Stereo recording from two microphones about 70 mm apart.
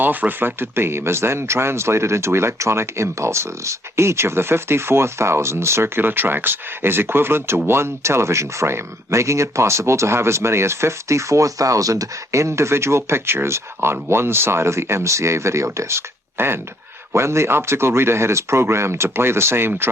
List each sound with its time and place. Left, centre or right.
0.0 s speech: right